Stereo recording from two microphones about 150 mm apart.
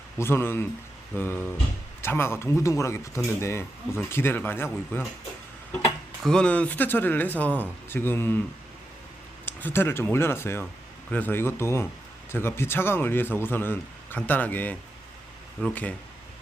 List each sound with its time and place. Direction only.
0.2 s speech: 15° left (ahead or behind)
6.2 s speech: 5° left (ahead or behind)
9.5 s speech: 15° left (ahead or behind)